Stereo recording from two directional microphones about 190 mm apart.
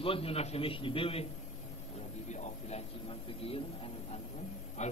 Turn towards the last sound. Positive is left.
turn(degrees=35)  # may be behind; listen again after turning